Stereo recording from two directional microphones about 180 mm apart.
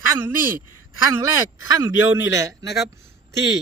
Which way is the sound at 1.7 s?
20° right (ahead or behind).